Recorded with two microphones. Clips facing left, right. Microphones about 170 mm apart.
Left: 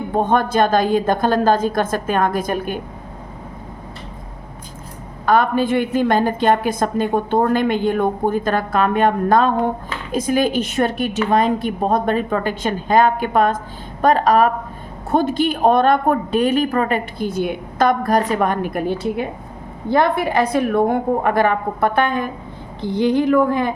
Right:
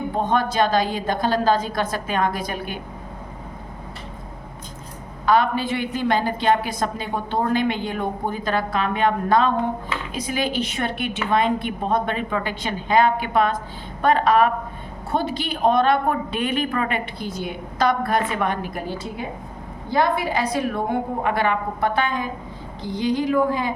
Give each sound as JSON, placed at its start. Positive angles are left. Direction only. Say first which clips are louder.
{"t": 0.2, "sound": "a woman's voice", "louder": "left 4 dB", "side_deg": 50}
{"t": 5.2, "sound": "a woman's voice", "louder": "left 3 dB", "side_deg": 50}